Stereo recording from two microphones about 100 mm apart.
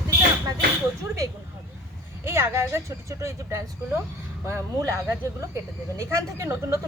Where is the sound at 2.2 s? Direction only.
25° right (ahead or behind).